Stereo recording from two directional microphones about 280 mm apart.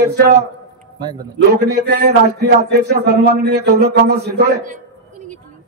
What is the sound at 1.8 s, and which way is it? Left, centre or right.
Speech, right.